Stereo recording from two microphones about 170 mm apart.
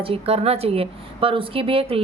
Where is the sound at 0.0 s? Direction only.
35° right (ahead or behind).